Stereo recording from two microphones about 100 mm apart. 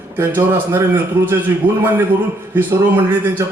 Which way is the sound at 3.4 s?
30° right (ahead or behind).